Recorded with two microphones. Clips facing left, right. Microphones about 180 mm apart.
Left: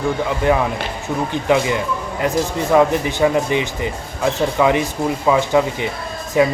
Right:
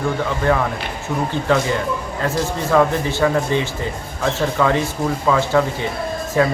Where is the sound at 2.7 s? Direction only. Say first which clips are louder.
Left 2 dB; 15° left (ahead or behind).